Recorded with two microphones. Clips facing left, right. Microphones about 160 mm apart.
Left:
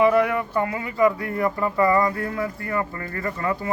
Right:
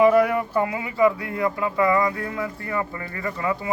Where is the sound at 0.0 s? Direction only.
10° right (ahead or behind).